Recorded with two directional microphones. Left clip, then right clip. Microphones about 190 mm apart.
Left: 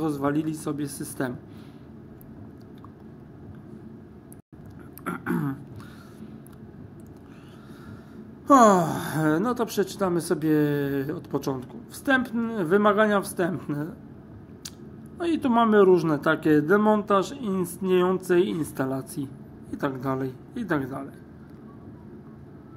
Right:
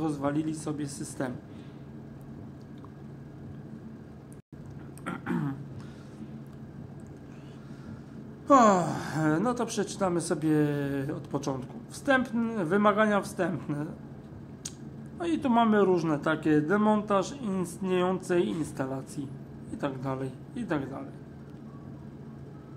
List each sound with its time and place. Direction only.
0.0 s speech: 20° left (ahead or behind)
5.0 s a sound: 15° left (ahead or behind)
8.5 s a woman's voice: 20° left (ahead or behind)
15.1 s a woman's voice: 15° left (ahead or behind)